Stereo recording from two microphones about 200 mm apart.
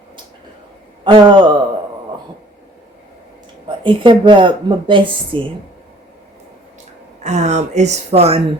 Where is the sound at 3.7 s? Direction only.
25° right (ahead or behind).